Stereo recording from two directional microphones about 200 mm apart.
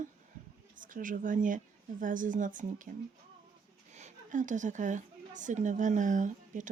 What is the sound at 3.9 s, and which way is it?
A woman's voice, 35° right (ahead or behind).